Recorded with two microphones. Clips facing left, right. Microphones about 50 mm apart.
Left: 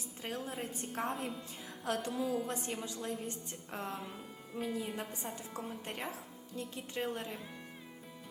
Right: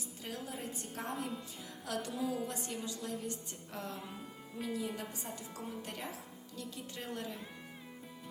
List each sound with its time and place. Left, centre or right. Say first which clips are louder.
0.2 s a woman's voice: left 3 dB; left
3.9 s speech: left 2 dB; centre
4.6 s a woman's voice: even; left